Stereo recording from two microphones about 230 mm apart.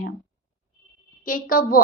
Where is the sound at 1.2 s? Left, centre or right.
Left.